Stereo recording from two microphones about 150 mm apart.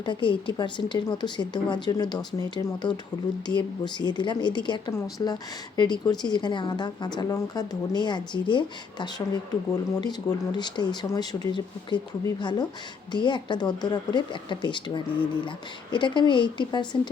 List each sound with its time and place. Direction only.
0.0 s a woman's voice: 30° left (ahead or behind)